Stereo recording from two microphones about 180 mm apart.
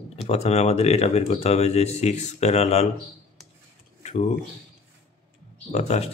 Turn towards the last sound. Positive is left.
turn(degrees=40)  # may be behind; listen again after turning